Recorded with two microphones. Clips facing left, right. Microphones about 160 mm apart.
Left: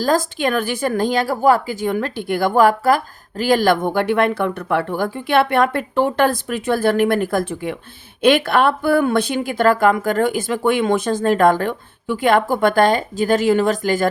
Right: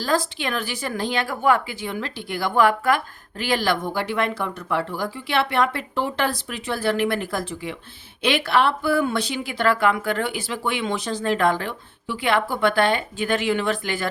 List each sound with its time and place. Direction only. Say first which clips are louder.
0.0 s speech: left 6 dB; 45° left (ahead or behind)